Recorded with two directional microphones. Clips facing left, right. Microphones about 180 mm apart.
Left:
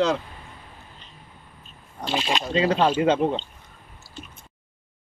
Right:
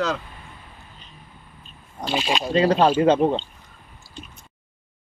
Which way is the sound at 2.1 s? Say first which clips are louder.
Right 2 dB; 10° right (ahead or behind).